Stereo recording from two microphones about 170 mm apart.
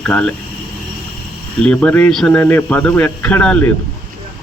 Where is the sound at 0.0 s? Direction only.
5° left (ahead or behind).